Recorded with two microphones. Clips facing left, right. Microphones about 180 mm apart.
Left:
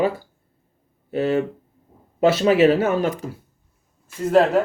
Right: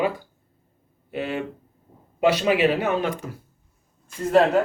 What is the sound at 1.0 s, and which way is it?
Speech, 40° left (ahead or behind).